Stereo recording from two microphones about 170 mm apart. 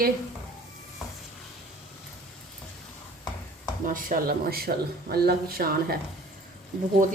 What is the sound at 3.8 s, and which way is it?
A woman's voice, 50° right (ahead or behind).